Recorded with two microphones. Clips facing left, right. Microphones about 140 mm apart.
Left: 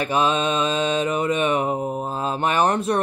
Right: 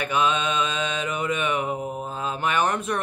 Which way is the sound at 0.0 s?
35° left (ahead or behind).